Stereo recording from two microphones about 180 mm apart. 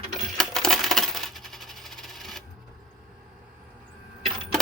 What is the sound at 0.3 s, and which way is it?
Coin, centre (ahead or behind).